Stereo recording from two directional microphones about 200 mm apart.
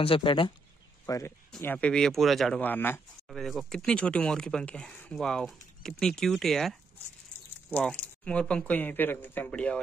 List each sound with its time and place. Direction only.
0.0 s speech: 25° left (ahead or behind); by 9.8 s 5° left (ahead or behind)